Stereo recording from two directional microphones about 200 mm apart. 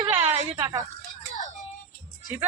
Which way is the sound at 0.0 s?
30° right (ahead or behind).